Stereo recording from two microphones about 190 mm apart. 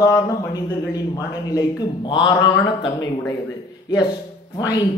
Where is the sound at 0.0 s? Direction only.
20° left (ahead or behind).